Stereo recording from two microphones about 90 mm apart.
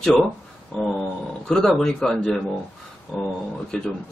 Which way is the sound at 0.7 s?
10° left (ahead or behind).